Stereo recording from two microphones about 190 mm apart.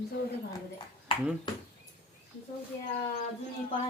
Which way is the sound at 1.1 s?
30° left (ahead or behind).